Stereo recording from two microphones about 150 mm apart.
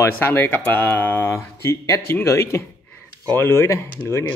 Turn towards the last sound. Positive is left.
turn(degrees=20)  # may be behind; listen again after turning